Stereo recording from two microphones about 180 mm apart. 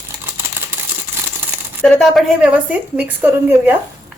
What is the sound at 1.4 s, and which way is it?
Coin, 10° right (ahead or behind).